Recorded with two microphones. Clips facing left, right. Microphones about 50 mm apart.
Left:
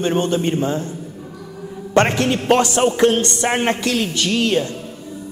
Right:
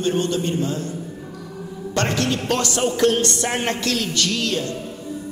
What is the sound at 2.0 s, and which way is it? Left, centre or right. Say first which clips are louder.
A man's voice: left 6 dB; left.